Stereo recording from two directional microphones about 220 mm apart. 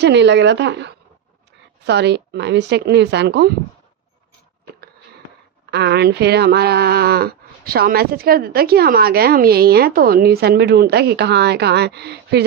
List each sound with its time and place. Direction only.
0.0 s speech: 50° right (ahead or behind)
5.7 s speech: 50° right (ahead or behind)